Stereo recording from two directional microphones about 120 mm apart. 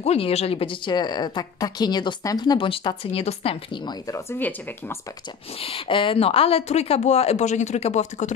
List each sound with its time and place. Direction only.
0.0 s a woman's voice: 60° left (ahead or behind)
3.8 s speech: 25° left (ahead or behind)
4.4 s speech: 15° left (ahead or behind)
5.6 s speech: 50° left (ahead or behind); by 8.3 s 75° left (ahead or behind)